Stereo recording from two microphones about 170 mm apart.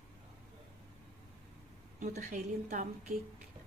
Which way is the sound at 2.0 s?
45° right (ahead or behind).